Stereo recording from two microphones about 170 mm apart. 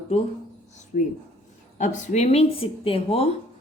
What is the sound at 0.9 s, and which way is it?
Speech, 55° left (ahead or behind).